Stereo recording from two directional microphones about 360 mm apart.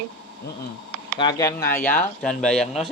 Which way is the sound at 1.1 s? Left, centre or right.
Centre.